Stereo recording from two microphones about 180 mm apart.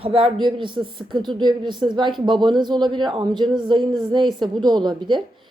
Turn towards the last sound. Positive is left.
turn(degrees=-25)  # may be behind; listen again after turning